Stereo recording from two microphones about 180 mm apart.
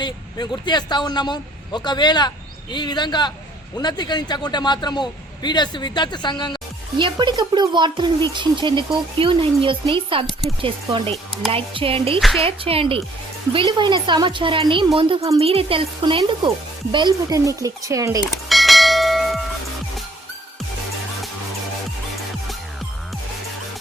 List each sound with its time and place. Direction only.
0.0 s a man's voice: 25° left (ahead or behind)
7.0 s speech: 25° right (ahead or behind)
18.4 s church bell: centre (ahead or behind)